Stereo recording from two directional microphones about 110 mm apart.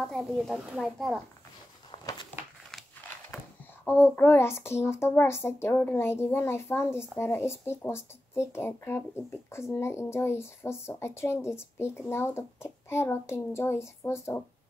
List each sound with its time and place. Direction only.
0.0 s speech: centre (ahead or behind)
1.9 s a sound: 45° left (ahead or behind)
3.8 s a child's voice: 20° left (ahead or behind)